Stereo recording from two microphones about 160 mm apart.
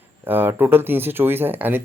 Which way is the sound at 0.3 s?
10° right (ahead or behind).